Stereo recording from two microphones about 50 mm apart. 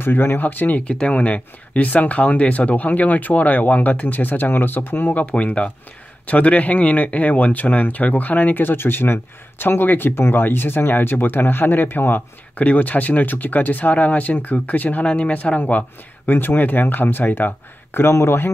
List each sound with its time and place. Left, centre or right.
0.0 s speech: left
0.8 s speech: left
5.3 s speech: left
8.6 s speech: left
12.5 s speech: left
15.0 s speech: left
16.3 s speech: left
18.1 s speech: left